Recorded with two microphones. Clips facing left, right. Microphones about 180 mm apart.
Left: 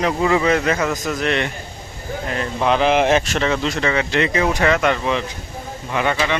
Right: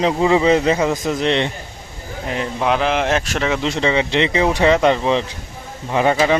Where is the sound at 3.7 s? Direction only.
20° right (ahead or behind).